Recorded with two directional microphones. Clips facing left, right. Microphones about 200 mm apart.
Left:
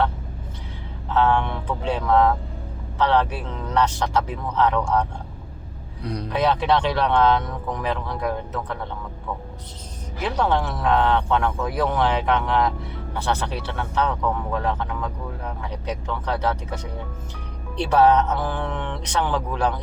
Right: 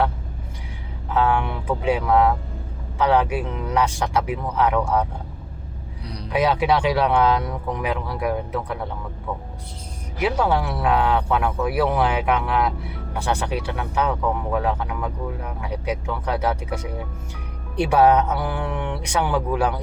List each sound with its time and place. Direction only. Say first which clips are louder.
1.1 s speech: left 1 dB; 10° right (ahead or behind)
6.0 s speech: left 7 dB; 50° left (ahead or behind)
6.3 s speech: right 1 dB; 10° right (ahead or behind)
10.2 s speech: right 2 dB; 10° right (ahead or behind)